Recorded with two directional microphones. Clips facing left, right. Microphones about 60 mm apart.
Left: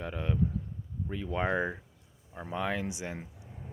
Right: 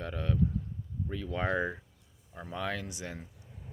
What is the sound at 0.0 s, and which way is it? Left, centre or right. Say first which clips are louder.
Speech: even; centre.